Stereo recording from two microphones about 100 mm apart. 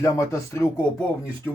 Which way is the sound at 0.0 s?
30° left (ahead or behind).